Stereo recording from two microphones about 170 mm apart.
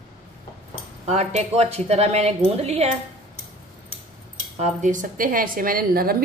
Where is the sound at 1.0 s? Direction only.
40° right (ahead or behind).